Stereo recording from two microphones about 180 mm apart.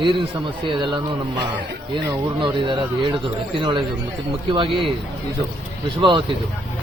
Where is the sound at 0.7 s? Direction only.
25° right (ahead or behind).